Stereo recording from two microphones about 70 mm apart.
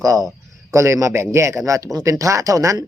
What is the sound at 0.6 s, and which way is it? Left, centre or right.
Speech, right.